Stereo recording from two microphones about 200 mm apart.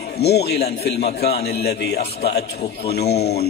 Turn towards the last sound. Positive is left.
turn(degrees=55)  # may be behind; listen again after turning